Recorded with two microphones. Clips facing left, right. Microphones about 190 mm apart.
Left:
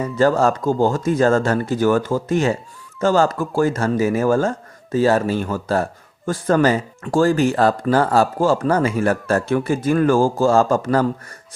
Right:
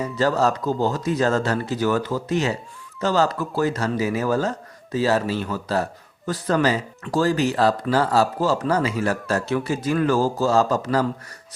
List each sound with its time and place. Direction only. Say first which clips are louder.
0.0 s speech: left 4 dB; 50° left (ahead or behind)